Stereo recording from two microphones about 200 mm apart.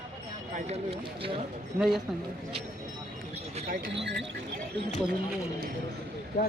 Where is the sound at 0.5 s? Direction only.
35° right (ahead or behind).